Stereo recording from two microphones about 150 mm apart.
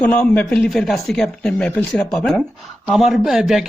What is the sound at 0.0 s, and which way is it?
A man's voice, 10° left (ahead or behind).